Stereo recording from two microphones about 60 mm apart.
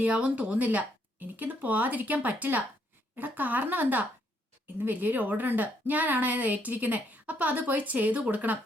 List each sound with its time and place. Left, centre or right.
0.0 s a woman's voice: right